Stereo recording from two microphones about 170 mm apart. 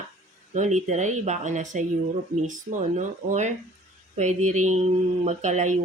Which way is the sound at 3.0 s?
45° right (ahead or behind).